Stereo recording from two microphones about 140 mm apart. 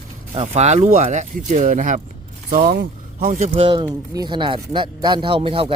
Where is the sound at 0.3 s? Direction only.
50° right (ahead or behind); by 2.0 s 70° right (ahead or behind).